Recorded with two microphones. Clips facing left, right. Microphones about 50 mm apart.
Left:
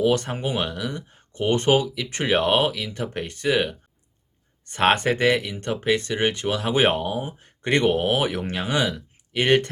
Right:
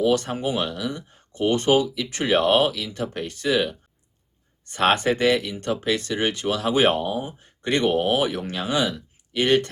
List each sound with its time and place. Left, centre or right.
0.0 s speech: left
7.9 s speech: left